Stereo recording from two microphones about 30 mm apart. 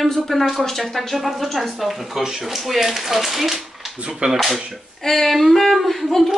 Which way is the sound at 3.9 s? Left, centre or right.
Right.